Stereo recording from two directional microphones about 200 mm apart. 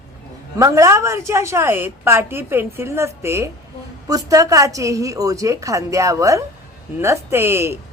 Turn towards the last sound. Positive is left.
turn(degrees=-10)  # may be behind; listen again after turning